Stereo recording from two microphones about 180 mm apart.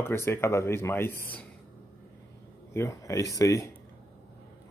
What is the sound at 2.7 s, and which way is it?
Speech, 15° left (ahead or behind).